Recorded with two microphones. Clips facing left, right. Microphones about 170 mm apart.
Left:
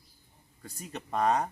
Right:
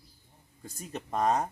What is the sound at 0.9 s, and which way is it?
Speech, centre (ahead or behind).